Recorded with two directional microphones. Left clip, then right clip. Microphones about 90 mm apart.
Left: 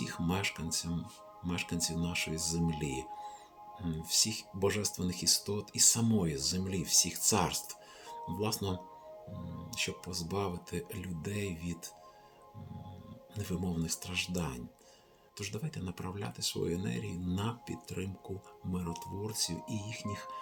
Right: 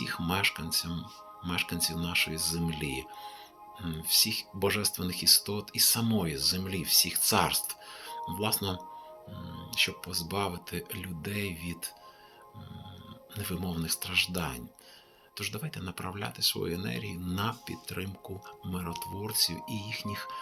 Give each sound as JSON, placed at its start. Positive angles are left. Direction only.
{"t": 0.3, "sound": "speech", "side_deg": 35}
{"t": 13.3, "sound": "speech", "side_deg": 35}